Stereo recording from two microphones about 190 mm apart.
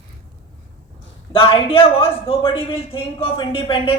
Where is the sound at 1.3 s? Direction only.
30° left (ahead or behind).